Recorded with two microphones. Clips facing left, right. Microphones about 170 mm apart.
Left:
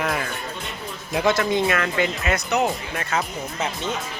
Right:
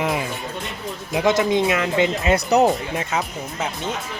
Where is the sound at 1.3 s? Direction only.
20° right (ahead or behind); by 2.7 s 35° right (ahead or behind).